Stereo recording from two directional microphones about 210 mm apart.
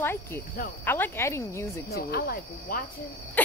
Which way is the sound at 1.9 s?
50° left (ahead or behind).